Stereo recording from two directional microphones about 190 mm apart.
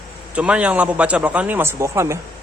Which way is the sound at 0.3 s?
5° right (ahead or behind).